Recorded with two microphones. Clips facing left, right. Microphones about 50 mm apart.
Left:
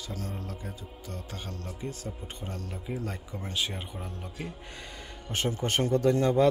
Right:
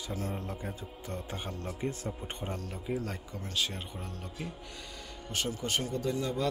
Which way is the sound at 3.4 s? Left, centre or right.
Left.